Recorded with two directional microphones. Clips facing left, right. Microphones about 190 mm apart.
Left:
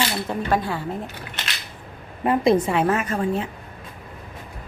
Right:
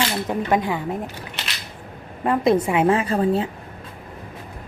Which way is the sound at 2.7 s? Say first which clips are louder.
Right 3 dB; 25° right (ahead or behind).